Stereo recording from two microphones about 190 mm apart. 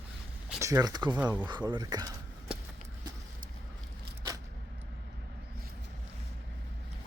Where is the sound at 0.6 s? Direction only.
20° right (ahead or behind).